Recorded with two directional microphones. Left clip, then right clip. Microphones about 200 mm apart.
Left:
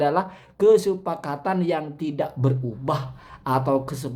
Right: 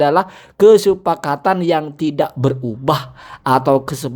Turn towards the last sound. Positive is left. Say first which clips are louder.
# right 8 dB
turn(degrees=-40)  # may be behind; listen again after turning